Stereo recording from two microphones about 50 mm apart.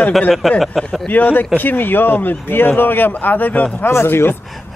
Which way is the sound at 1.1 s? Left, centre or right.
Left.